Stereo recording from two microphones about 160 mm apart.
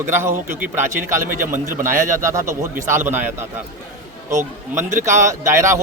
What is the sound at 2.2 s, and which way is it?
Speech, 20° right (ahead or behind).